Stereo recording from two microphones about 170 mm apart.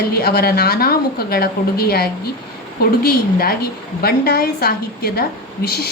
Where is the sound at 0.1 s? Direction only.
65° left (ahead or behind).